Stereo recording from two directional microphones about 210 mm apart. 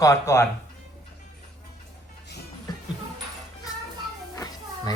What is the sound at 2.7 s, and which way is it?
Music, 20° left (ahead or behind).